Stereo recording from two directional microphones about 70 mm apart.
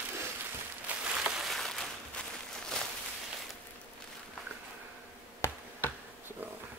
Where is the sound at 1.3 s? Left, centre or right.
Centre.